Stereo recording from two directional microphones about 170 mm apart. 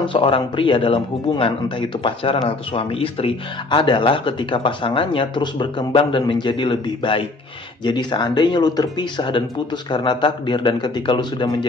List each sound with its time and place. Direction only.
0.1 s speech: 30° left (ahead or behind)